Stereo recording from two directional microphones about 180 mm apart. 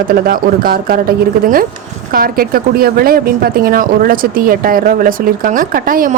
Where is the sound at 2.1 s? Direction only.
55° right (ahead or behind).